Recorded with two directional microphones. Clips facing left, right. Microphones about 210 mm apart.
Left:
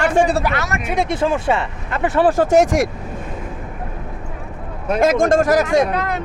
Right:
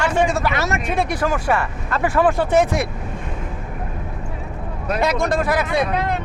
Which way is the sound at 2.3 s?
45° left (ahead or behind).